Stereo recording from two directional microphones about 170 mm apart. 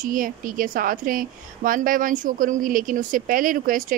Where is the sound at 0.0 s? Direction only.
55° right (ahead or behind).